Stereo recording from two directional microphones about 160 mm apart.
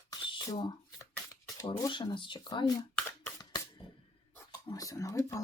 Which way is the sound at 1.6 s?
30° left (ahead or behind).